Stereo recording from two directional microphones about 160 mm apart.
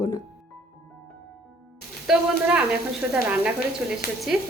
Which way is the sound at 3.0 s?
10° right (ahead or behind).